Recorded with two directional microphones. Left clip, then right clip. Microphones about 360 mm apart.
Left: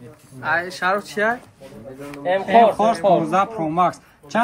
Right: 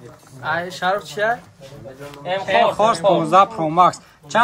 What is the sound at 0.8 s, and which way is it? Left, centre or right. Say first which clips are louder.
Speech: right 2 dB; centre.